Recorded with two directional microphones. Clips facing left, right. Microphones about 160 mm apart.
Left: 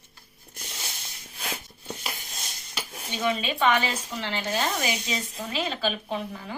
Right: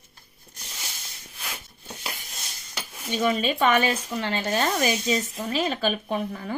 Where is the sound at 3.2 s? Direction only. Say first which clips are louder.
Right 2 dB; 40° right (ahead or behind).